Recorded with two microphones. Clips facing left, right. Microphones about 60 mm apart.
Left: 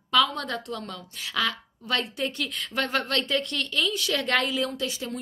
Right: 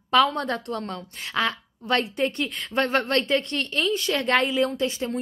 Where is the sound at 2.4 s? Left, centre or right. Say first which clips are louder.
Right 4 dB; right.